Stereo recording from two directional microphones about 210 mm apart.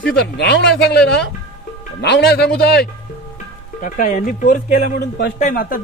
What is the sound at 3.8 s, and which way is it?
A man's voice, 40° left (ahead or behind).